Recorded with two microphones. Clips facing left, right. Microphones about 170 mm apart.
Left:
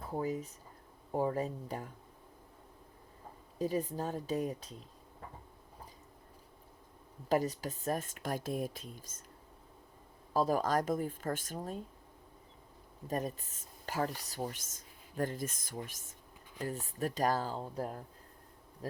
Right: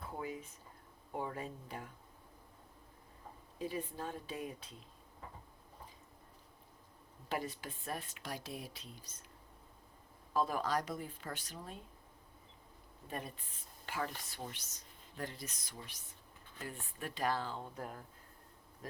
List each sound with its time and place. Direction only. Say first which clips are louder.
0.2 s speech: left 9 dB; 40° left (ahead or behind)
3.6 s speech: left 7 dB; 40° left (ahead or behind)
7.3 s speech: left 9 dB; 40° left (ahead or behind)
10.3 s speech: left 5 dB; 40° left (ahead or behind)
13.1 s speech: left 8 dB; 40° left (ahead or behind)